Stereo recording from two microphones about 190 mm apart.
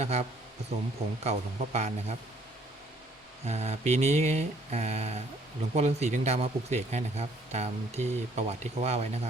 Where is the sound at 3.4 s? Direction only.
35° right (ahead or behind).